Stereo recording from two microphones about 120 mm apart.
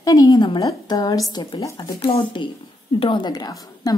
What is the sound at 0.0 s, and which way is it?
A woman's voice, 30° left (ahead or behind).